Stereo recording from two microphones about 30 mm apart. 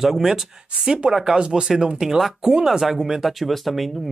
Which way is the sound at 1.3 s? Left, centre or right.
Right.